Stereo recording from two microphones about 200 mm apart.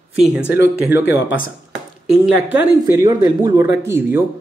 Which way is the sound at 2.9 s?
20° right (ahead or behind).